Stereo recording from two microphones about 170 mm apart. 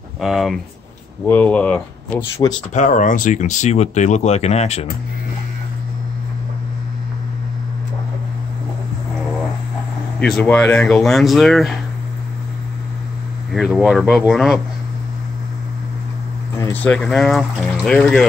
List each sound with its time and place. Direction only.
0.2 s speech: centre (ahead or behind)
1.2 s speech: 10° left (ahead or behind)
2.7 s speech: 45° left (ahead or behind)
10.2 s speech: 5° left (ahead or behind)
13.5 s speech: centre (ahead or behind)
16.5 s speech: 15° left (ahead or behind)